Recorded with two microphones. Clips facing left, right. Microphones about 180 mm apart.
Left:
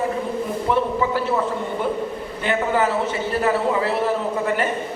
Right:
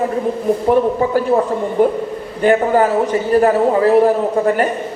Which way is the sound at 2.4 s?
45° right (ahead or behind).